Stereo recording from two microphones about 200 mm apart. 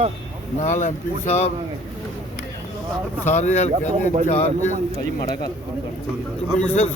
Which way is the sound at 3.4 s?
35° left (ahead or behind).